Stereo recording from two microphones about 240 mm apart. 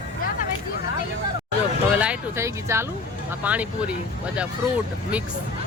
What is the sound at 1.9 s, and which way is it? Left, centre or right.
Speech, centre.